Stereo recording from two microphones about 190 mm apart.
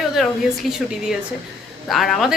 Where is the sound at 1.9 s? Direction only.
Centre (ahead or behind).